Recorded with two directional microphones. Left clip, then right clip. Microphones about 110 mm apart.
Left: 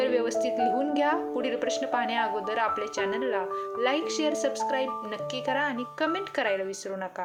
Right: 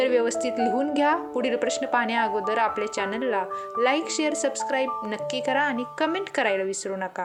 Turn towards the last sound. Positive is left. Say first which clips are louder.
# right 3 dB
turn(degrees=-45)  # may be behind; listen again after turning